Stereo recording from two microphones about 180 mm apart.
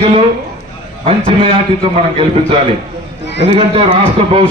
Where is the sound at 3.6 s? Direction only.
30° right (ahead or behind).